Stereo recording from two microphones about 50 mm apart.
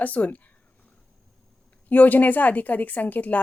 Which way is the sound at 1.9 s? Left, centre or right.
Left.